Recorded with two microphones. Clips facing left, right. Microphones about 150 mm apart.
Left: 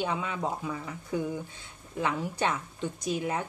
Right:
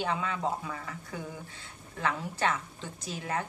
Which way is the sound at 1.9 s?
15° left (ahead or behind).